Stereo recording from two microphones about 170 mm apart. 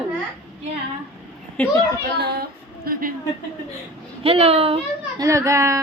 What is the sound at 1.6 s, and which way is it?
Speech, 5° left (ahead or behind).